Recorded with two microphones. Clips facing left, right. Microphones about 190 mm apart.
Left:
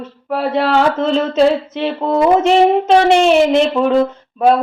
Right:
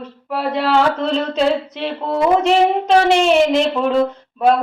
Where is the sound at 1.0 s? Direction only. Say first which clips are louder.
Left 5 dB; centre (ahead or behind).